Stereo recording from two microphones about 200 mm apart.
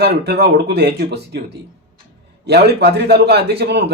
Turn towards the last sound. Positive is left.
turn(degrees=-55)  # may be behind; listen again after turning